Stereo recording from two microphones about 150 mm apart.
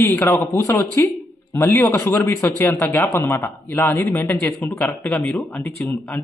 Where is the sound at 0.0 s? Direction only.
15° left (ahead or behind).